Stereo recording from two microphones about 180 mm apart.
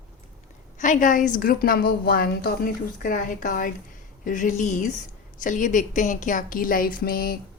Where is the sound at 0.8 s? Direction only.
45° left (ahead or behind).